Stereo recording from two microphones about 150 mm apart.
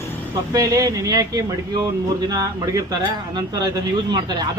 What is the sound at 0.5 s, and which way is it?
Speech, 20° right (ahead or behind).